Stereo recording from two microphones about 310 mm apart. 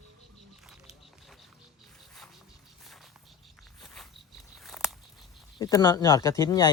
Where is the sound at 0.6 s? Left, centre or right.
Centre.